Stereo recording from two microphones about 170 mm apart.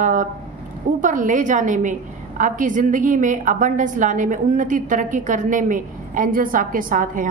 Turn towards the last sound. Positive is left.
turn(degrees=-50)  # may be behind; listen again after turning